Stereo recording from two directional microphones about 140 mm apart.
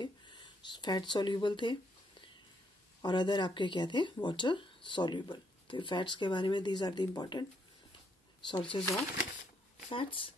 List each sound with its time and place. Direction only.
0.0 s a sound: 30° left (ahead or behind)
3.0 s speech: 35° left (ahead or behind)
8.5 s speech: 35° left (ahead or behind)
9.8 s speech: 40° left (ahead or behind)